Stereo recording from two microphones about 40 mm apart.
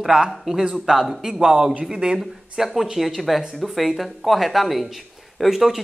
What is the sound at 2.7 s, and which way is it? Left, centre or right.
Speech, centre.